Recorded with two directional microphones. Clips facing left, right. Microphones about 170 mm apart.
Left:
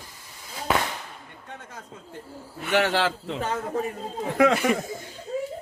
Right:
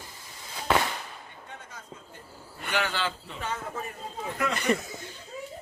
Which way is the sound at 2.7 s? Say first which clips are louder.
Left 7 dB; 70° left (ahead or behind).